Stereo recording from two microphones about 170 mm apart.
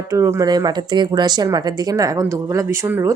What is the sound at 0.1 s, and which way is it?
A woman's voice, 15° right (ahead or behind).